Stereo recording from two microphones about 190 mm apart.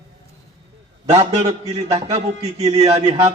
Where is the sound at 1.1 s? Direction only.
30° right (ahead or behind).